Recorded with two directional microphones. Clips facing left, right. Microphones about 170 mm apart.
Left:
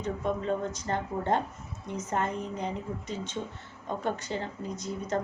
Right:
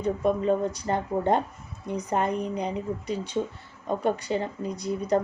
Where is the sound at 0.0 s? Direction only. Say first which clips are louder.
Right 6 dB; 15° right (ahead or behind).